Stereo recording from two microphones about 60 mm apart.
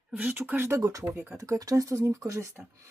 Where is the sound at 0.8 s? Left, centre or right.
Right.